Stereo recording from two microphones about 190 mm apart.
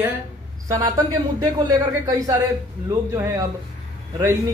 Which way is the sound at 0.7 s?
20° right (ahead or behind).